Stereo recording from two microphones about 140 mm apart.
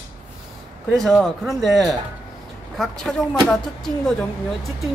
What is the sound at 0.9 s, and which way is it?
A woman's voice, centre (ahead or behind).